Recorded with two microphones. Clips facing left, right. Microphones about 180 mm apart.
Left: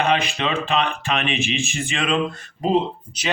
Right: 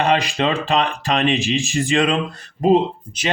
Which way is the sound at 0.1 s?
35° right (ahead or behind).